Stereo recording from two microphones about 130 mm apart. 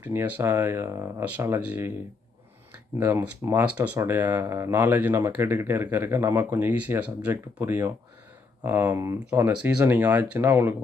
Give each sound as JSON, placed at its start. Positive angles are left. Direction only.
{"t": 0.0, "sound": "speech", "side_deg": -15}
{"t": 3.0, "sound": "speech", "side_deg": -15}
{"t": 10.4, "sound": "speech", "side_deg": -20}